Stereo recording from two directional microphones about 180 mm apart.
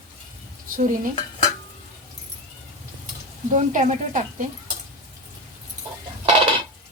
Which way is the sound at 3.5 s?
45° right (ahead or behind).